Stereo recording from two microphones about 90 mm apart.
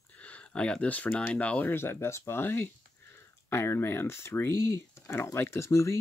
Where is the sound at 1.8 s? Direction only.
30° left (ahead or behind).